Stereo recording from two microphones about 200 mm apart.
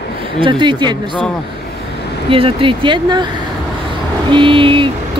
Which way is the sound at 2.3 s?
25° right (ahead or behind).